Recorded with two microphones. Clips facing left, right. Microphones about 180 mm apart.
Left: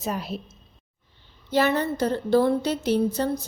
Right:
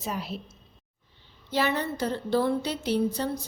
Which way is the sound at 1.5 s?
45° left (ahead or behind).